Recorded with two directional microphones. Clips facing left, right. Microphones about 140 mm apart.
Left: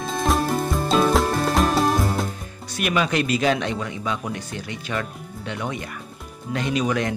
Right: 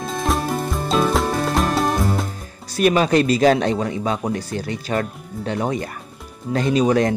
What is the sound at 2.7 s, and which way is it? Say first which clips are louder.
Speech: right 7 dB; 35° right (ahead or behind).